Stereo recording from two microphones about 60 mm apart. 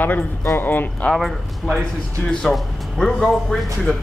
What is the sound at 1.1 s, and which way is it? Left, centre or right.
Speech, centre.